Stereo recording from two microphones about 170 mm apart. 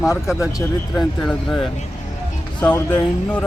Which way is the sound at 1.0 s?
5° left (ahead or behind).